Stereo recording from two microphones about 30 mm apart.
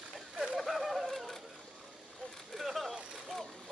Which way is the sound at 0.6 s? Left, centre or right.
Centre.